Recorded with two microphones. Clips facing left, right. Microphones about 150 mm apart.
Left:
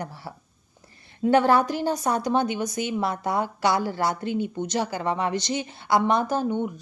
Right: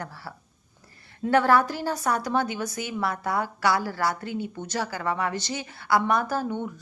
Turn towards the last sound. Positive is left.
turn(degrees=20)  # may be behind; listen again after turning